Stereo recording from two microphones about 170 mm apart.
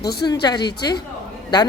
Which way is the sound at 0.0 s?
70° left (ahead or behind).